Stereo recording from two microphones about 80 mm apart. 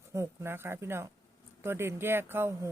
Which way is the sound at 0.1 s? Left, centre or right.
Right.